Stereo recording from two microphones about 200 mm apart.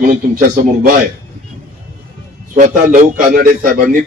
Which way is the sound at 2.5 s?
40° right (ahead or behind).